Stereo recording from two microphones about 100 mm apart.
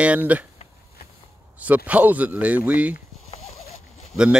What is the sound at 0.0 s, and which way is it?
Speech, 15° right (ahead or behind).